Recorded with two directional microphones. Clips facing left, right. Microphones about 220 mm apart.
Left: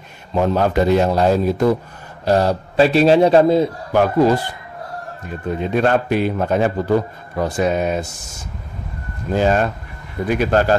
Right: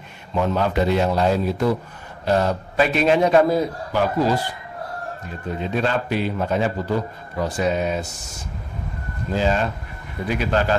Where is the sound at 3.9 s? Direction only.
55° left (ahead or behind).